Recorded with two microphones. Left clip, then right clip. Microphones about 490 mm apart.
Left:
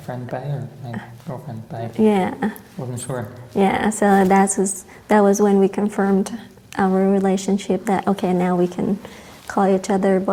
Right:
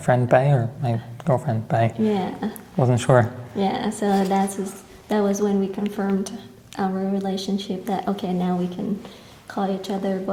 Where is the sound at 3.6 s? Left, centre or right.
Left.